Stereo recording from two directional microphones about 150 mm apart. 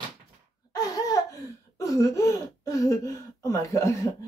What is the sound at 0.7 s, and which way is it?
Laughter, 25° left (ahead or behind).